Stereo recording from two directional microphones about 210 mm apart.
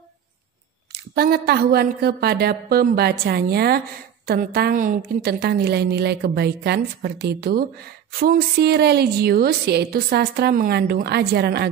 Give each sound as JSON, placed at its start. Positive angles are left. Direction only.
{"t": 0.9, "sound": "a woman's voice", "side_deg": -50}